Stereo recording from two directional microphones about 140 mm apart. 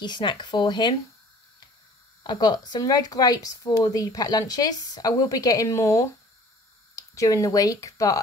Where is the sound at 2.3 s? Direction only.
30° left (ahead or behind).